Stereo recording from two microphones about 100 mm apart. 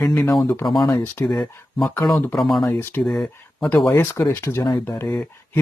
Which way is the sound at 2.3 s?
Centre (ahead or behind).